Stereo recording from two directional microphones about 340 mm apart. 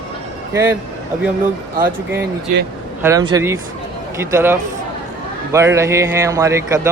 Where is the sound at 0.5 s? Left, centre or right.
Centre.